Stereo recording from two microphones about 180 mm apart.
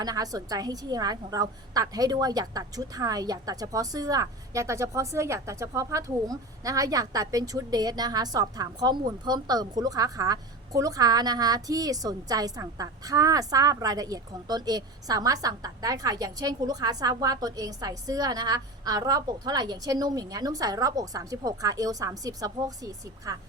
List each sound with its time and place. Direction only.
0.0 s a woman's voice: 20° right (ahead or behind)